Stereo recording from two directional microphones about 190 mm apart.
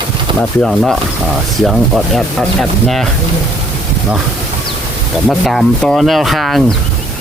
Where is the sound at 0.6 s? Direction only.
Centre (ahead or behind).